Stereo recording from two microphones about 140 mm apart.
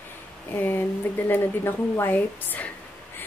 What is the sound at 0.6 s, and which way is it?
Speech, 15° left (ahead or behind).